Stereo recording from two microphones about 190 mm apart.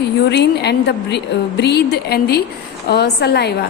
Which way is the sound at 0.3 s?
60° left (ahead or behind).